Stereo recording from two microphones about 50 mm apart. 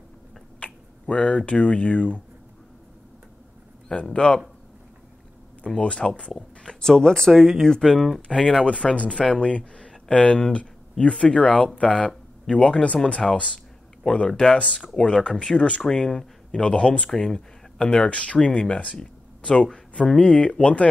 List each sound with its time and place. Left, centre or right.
0.6 s speech: left
3.9 s speech: centre
5.8 s speech: left
7.3 s speech: centre
8.2 s speech: centre
15.9 s speech: centre
16.5 s speech: centre
18.9 s a sound: centre
20.2 s speech: left